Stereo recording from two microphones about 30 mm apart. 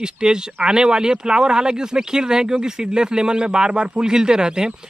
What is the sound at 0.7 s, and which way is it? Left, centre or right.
Speech, right.